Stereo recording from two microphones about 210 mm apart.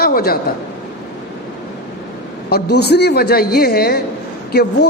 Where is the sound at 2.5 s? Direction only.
50° left (ahead or behind).